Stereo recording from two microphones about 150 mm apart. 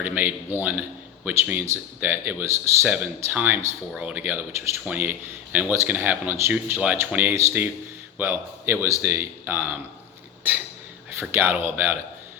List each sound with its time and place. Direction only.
0.0 s a man's voice: 10° right (ahead or behind)
11.2 s a man's voice: 15° right (ahead or behind)